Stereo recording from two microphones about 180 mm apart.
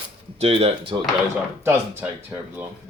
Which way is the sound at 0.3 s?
35° right (ahead or behind).